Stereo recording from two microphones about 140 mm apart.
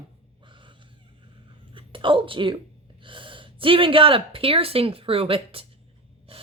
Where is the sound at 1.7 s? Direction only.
35° right (ahead or behind).